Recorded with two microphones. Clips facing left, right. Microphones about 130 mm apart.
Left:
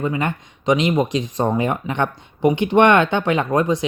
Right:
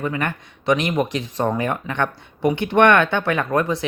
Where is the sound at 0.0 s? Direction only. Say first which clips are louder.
Left 2 dB; 20° left (ahead or behind).